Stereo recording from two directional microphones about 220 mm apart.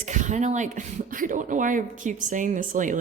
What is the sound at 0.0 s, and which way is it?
Speech, 35° right (ahead or behind).